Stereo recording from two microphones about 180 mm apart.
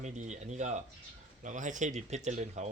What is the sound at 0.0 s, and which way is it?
Speech, 40° right (ahead or behind).